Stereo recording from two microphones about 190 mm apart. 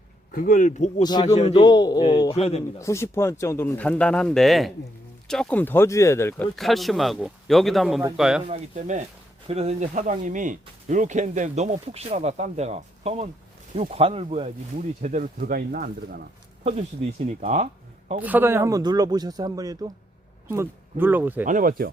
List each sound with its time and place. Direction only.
0.3 s speech: 45° left (ahead or behind)
1.0 s a man's voice: 20° left (ahead or behind)
1.4 s a man's voice: 35° left (ahead or behind)
1.6 s a man's voice: 20° left (ahead or behind)
2.7 s speech: 15° left (ahead or behind)
6.3 s speech: centre (ahead or behind)
8.4 s speech: 40° right (ahead or behind)
16.6 s speech: 35° right (ahead or behind)
18.2 s speech: 10° right (ahead or behind)
21.4 s speech: 45° right (ahead or behind)